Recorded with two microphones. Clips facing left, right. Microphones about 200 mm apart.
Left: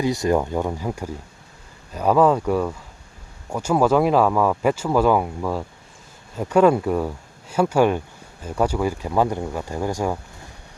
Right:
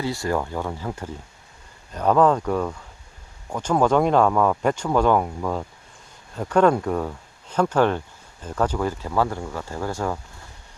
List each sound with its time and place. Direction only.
0.0 s speech: 20° left (ahead or behind)